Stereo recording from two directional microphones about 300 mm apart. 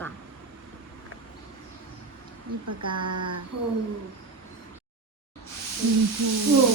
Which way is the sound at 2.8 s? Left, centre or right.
Centre.